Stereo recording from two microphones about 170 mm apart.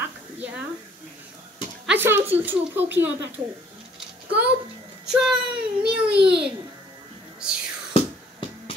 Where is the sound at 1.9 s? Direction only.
10° right (ahead or behind).